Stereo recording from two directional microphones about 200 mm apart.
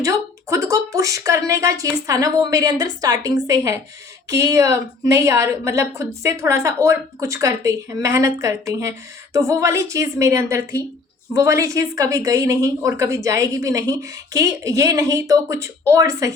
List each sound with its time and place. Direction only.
0.0 s a woman's voice: 15° right (ahead or behind)